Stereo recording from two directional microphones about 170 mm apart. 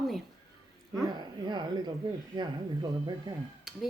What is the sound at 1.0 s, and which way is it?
Dog, 25° right (ahead or behind).